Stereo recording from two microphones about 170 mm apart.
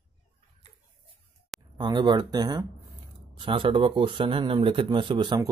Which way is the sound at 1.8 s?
25° right (ahead or behind).